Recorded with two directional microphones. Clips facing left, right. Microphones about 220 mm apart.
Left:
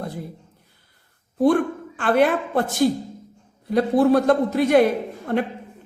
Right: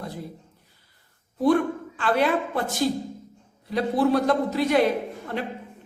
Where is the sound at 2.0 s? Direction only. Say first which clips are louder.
Left 4 dB; 50° left (ahead or behind).